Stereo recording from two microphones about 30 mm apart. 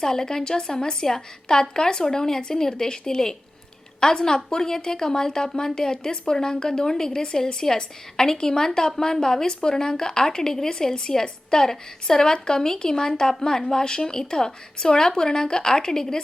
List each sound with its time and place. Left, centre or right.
0.0 s a woman's voice: centre